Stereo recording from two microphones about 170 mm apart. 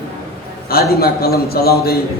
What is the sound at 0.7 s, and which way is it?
A man's voice, 65° left (ahead or behind).